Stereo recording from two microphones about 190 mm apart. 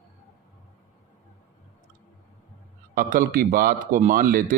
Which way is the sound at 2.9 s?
50° right (ahead or behind).